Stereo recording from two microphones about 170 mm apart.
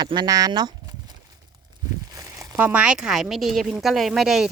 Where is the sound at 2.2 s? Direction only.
20° right (ahead or behind).